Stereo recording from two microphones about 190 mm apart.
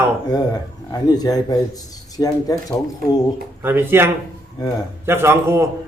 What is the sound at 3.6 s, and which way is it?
Speech, 10° right (ahead or behind).